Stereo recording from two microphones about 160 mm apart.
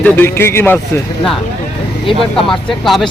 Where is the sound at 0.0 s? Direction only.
15° left (ahead or behind).